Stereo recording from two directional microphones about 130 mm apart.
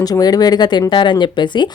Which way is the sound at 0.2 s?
30° left (ahead or behind).